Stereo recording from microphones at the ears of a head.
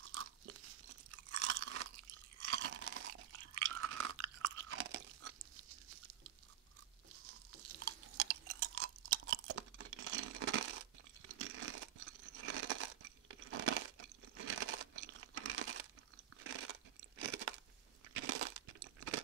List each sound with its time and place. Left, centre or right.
0.0 s chewing: right
7.2 s chewing: right
17.2 s crunch: right
18.1 s a sound: right